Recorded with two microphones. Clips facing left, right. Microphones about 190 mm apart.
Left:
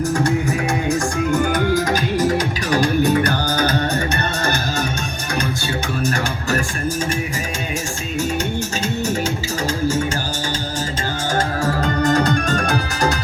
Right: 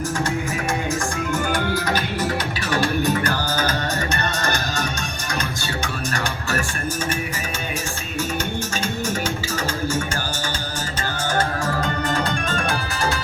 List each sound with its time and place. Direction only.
1.9 s music: 40° left (ahead or behind)
11.6 s music: 40° left (ahead or behind)